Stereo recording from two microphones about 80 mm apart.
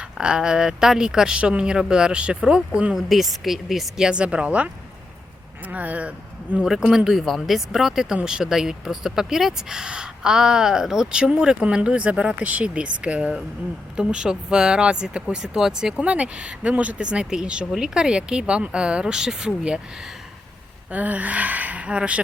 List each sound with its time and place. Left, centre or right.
0.2 s speech: centre
20.9 s speech: centre